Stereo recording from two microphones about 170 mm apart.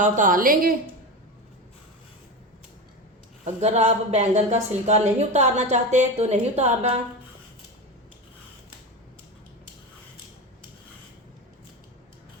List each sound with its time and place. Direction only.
0.0 s a woman's voice: 50° right (ahead or behind)
3.4 s a woman's voice: 40° right (ahead or behind)